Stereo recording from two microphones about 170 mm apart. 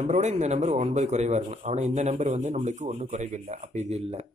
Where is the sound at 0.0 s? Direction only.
45° right (ahead or behind).